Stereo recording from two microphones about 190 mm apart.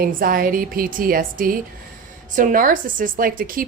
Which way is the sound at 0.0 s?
50° right (ahead or behind).